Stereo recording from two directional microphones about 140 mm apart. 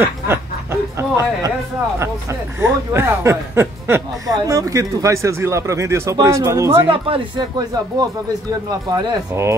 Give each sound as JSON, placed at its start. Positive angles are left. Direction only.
{"t": 0.0, "sound": "a sound", "side_deg": -15}
{"t": 2.6, "sound": "a man's voice", "side_deg": -20}
{"t": 6.9, "sound": "speech", "side_deg": -35}
{"t": 9.3, "sound": "a man's voice", "side_deg": -20}